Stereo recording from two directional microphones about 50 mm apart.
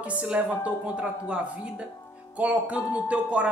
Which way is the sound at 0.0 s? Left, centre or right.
Right.